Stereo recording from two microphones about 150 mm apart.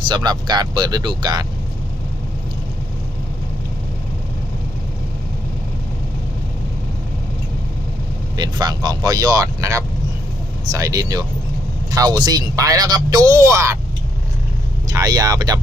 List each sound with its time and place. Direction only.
0.1 s speech: 30° right (ahead or behind)
8.4 s speech: 30° right (ahead or behind)
14.8 s speech: 25° right (ahead or behind)